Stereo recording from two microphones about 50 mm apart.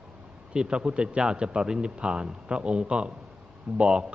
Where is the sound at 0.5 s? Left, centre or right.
Centre.